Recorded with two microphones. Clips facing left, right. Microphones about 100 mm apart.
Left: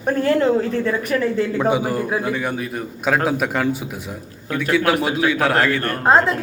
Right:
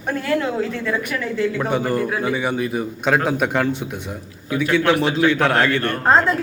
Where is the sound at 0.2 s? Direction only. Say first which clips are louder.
Left 4 dB; 35° left (ahead or behind).